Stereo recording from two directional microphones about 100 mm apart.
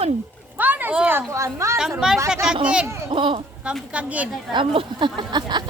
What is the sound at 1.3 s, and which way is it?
Speech, 30° right (ahead or behind).